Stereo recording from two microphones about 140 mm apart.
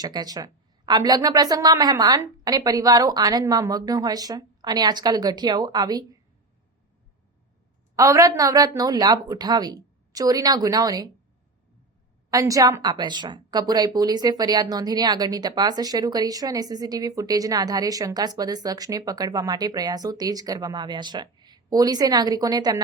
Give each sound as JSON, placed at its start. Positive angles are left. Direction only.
{"t": 0.0, "sound": "a woman's voice", "side_deg": -30}
{"t": 7.9, "sound": "a woman's voice", "side_deg": -25}
{"t": 12.3, "sound": "a woman's voice", "side_deg": -25}